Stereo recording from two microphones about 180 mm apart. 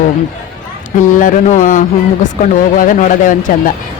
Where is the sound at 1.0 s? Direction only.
45° left (ahead or behind).